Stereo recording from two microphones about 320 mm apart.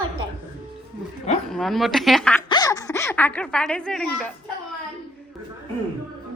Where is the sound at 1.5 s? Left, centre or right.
Centre.